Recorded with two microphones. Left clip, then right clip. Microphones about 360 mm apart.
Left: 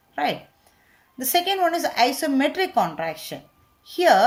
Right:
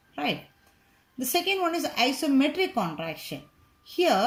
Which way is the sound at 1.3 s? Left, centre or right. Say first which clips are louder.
Left 5 dB; left.